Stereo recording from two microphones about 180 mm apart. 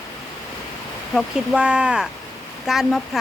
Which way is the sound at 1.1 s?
5° right (ahead or behind).